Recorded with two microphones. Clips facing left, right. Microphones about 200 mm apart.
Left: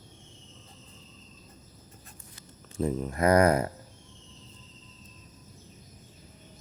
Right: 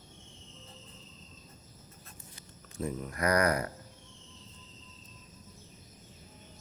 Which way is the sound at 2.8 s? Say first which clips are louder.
Left 6 dB; 25° left (ahead or behind).